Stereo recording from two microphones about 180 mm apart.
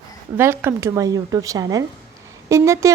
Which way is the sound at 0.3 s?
10° right (ahead or behind).